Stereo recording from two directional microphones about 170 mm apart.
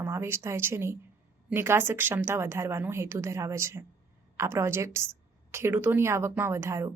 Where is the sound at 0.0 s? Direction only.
15° right (ahead or behind).